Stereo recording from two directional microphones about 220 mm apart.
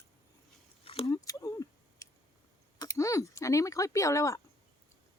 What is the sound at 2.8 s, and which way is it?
A woman's voice, 15° left (ahead or behind).